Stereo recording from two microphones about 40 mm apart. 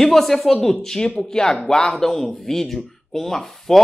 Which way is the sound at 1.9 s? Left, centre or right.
Centre.